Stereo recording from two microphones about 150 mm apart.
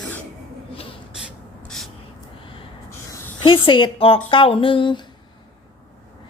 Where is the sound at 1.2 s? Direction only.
Centre (ahead or behind).